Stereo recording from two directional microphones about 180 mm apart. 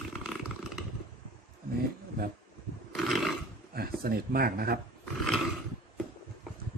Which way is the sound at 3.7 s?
55° right (ahead or behind).